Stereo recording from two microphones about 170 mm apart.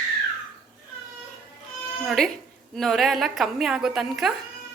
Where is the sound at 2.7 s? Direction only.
Centre (ahead or behind).